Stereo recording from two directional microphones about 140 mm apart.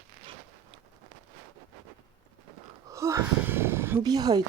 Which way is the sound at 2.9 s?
20° right (ahead or behind).